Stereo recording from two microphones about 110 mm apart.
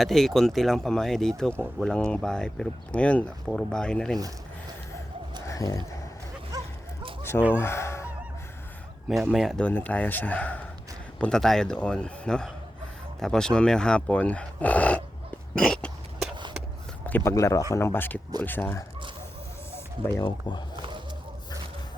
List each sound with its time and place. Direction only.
0.0 s speech: centre (ahead or behind)
5.5 s a sound: 30° left (ahead or behind)
6.5 s dog: 35° right (ahead or behind)
7.2 s chicken: 20° left (ahead or behind)
7.5 s speech: 25° left (ahead or behind)
9.3 s speech: centre (ahead or behind)
9.6 s speech: 15° left (ahead or behind)
15.5 s a sound: 5° left (ahead or behind)
17.1 s speech: 20° left (ahead or behind)
17.3 s speech: 30° left (ahead or behind)